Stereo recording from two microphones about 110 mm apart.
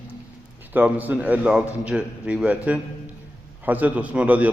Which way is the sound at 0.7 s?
15° right (ahead or behind).